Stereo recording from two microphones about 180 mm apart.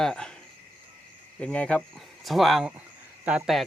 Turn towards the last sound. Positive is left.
turn(degrees=-5)  # may be behind; listen again after turning